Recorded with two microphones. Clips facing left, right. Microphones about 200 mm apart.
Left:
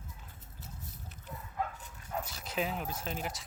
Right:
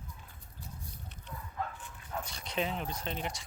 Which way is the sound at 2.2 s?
5° left (ahead or behind).